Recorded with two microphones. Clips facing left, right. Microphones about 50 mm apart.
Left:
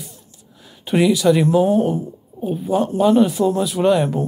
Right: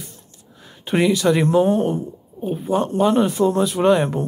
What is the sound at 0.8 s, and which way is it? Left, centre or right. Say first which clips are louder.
Speech: left 2 dB; centre.